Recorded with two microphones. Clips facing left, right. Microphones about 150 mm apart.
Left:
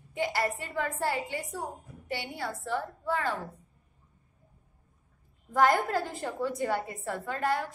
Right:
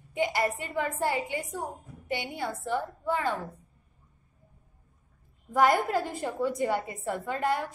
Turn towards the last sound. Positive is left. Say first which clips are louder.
# right 1 dB
turn(degrees=-20)  # may be behind; listen again after turning